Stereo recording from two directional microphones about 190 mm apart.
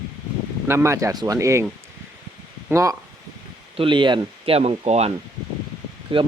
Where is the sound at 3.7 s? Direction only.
25° right (ahead or behind).